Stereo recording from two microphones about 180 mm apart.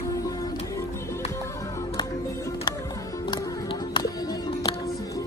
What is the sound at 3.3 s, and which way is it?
Music, 25° left (ahead or behind).